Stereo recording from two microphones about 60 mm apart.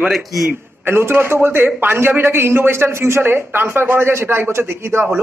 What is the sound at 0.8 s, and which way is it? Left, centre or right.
A man's voice, right.